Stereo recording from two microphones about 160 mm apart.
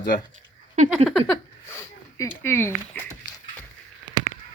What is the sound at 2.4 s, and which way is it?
Speech, 15° left (ahead or behind).